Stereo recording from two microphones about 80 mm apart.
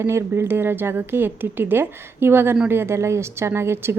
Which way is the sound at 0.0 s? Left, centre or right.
Right.